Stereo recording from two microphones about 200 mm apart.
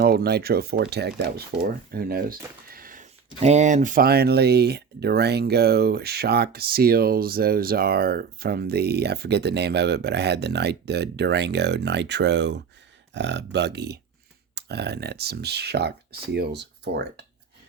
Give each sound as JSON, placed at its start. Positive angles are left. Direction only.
{"t": 0.0, "sound": "speech", "side_deg": -50}